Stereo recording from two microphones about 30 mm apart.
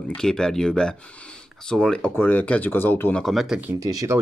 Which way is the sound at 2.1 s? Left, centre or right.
Left.